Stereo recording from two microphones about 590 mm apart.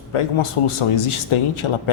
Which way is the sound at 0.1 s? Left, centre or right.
Left.